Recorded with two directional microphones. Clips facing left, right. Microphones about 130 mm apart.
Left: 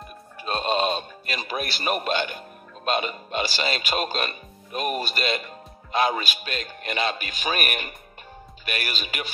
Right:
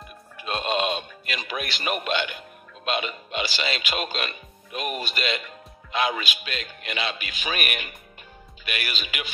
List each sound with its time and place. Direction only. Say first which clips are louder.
0.4 s speech: left 2 dB; 35° left (ahead or behind)